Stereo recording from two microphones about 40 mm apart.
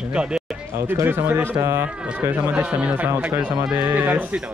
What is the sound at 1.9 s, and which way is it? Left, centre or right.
Speech, right.